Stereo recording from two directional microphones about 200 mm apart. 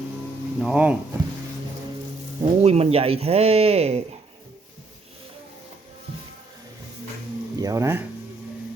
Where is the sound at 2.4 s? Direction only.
30° right (ahead or behind).